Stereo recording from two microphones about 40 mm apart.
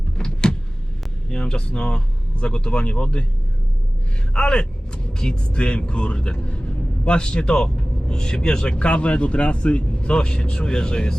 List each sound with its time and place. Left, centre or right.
0.2 s power windows: centre
1.3 s speech: left
4.4 s speech: left